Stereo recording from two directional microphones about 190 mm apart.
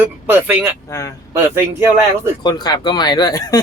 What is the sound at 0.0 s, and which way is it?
Speech, 10° right (ahead or behind).